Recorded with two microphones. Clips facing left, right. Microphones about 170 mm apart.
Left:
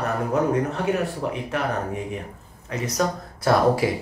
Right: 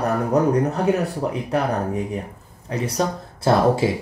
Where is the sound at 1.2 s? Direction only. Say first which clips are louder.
Right 3 dB; 35° right (ahead or behind).